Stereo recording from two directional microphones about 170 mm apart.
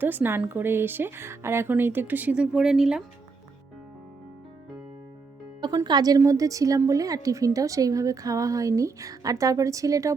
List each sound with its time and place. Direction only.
0.0 s speech: 10° right (ahead or behind)
5.5 s a woman's voice: 25° right (ahead or behind)